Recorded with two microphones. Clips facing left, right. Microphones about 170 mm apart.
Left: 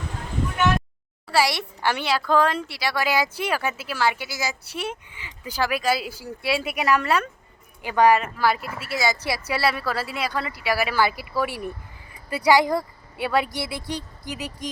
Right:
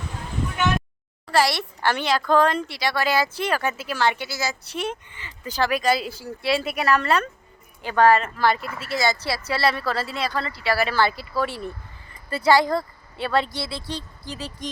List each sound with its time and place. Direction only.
1.3 s a woman's voice: 10° left (ahead or behind)